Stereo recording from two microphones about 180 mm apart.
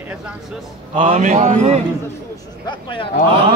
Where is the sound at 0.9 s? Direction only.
30° right (ahead or behind).